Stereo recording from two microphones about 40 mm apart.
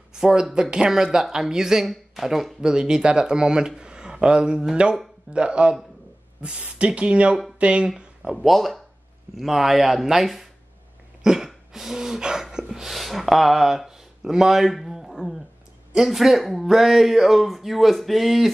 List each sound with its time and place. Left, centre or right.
0.1 s speech: centre
2.6 s speech: centre
6.9 s speech: right
8.2 s speech: centre
8.5 s speech: centre
11.2 s a sound: centre
12.9 s speech: centre